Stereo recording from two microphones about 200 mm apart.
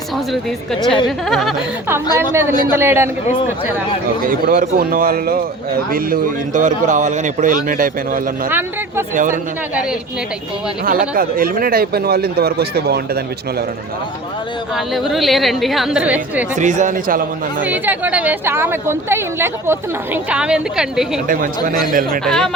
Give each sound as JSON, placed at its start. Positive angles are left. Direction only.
{"t": 0.3, "sound": "a woman's voice", "side_deg": 0}
{"t": 2.1, "sound": "a woman's voice", "side_deg": -15}
{"t": 4.3, "sound": "a man's voice", "side_deg": -45}
{"t": 8.4, "sound": "a woman's voice", "side_deg": -10}
{"t": 9.1, "sound": "speech", "side_deg": -40}
{"t": 11.1, "sound": "a man's voice", "side_deg": -45}
{"t": 14.8, "sound": "a woman's voice", "side_deg": 0}
{"t": 16.6, "sound": "speech", "side_deg": -35}
{"t": 17.6, "sound": "a woman's voice", "side_deg": -10}
{"t": 21.2, "sound": "a man's voice", "side_deg": -45}
{"t": 22.2, "sound": "a woman's voice", "side_deg": 5}